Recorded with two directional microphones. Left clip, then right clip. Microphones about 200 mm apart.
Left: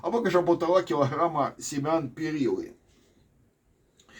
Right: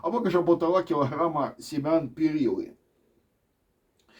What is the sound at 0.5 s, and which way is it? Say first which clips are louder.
Speech: even; 25° right (ahead or behind).